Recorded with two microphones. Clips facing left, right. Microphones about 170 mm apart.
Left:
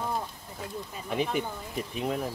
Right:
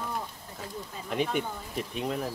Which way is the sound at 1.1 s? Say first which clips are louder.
Even; centre (ahead or behind).